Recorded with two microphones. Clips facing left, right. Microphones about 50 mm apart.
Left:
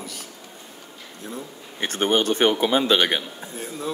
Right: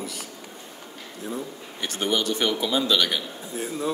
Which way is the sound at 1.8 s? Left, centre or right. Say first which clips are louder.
Left 4 dB; left.